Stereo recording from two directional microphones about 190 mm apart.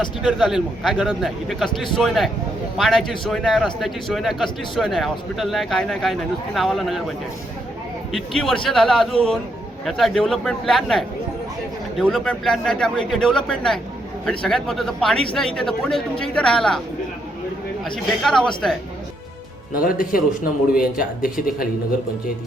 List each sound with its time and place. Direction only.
0.2 s speech: centre (ahead or behind)
8.1 s speech: centre (ahead or behind)
17.9 s speech: 5° left (ahead or behind)
19.8 s speech: 45° left (ahead or behind)